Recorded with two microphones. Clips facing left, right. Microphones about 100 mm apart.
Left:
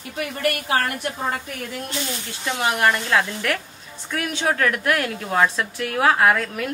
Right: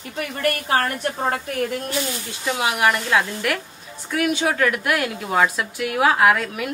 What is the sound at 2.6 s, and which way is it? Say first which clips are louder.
A woman's voice: even; 15° right (ahead or behind).